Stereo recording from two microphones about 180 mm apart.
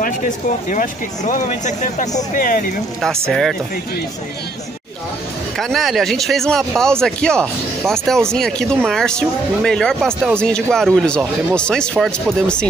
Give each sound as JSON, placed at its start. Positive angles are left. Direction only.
{"t": 0.0, "sound": "speech", "side_deg": 50}
{"t": 3.3, "sound": "speech", "side_deg": 0}
{"t": 5.6, "sound": "speech", "side_deg": 0}